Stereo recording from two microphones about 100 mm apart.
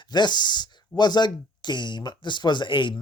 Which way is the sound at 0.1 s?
45° left (ahead or behind).